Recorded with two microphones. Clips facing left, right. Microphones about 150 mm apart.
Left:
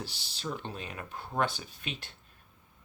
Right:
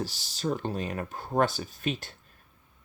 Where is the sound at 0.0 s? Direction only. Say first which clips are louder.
Right 8 dB; 40° right (ahead or behind).